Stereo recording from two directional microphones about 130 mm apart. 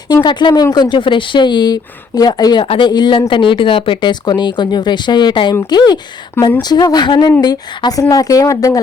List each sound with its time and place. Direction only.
0.1 s speech: 35° left (ahead or behind)